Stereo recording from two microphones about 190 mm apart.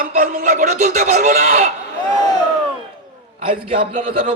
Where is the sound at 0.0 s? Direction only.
45° right (ahead or behind).